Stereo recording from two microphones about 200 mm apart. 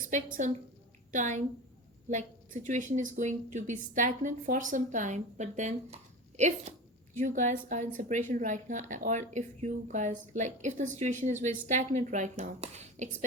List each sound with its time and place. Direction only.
0.1 s speech: 40° right (ahead or behind)